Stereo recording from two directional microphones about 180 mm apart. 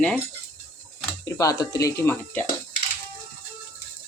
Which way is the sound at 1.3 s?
20° left (ahead or behind).